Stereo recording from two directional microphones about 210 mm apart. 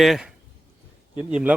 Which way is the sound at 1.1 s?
5° right (ahead or behind).